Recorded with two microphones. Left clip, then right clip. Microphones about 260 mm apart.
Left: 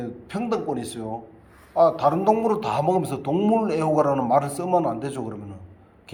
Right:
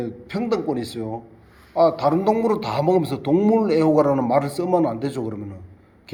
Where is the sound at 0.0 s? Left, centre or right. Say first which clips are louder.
Right 3 dB; right.